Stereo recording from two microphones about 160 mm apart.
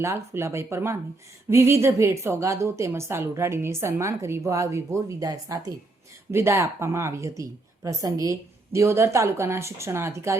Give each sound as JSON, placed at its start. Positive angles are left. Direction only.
{"t": 0.0, "sound": "a woman's voice", "side_deg": -20}